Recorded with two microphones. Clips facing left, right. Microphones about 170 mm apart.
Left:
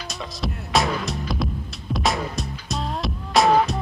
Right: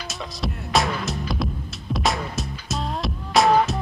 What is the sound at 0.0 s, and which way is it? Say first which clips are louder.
Music: even; centre (ahead or behind).